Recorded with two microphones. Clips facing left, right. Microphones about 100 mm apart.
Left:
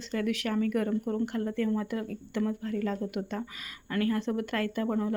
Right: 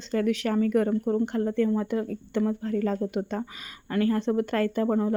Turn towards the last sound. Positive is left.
turn(degrees=-30)  # may be behind; listen again after turning